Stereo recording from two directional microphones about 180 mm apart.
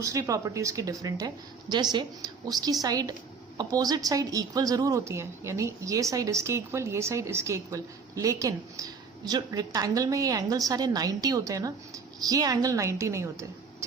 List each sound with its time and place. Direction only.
0.0 s a woman's voice: 15° right (ahead or behind)